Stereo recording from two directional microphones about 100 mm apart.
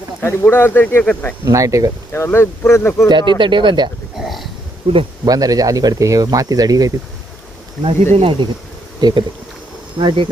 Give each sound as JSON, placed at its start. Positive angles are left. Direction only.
{"t": 0.2, "sound": "speech", "side_deg": 20}
{"t": 1.5, "sound": "speech", "side_deg": -35}
{"t": 2.1, "sound": "speech", "side_deg": 25}
{"t": 3.1, "sound": "speech", "side_deg": -55}
{"t": 4.2, "sound": "burping", "side_deg": 0}
{"t": 5.2, "sound": "speech", "side_deg": -40}
{"t": 8.1, "sound": "speech", "side_deg": -65}
{"t": 9.0, "sound": "speech", "side_deg": -45}
{"t": 10.0, "sound": "speech", "side_deg": -55}